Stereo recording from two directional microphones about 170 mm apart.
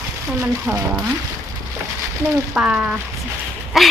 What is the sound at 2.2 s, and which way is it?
Speech, 15° right (ahead or behind).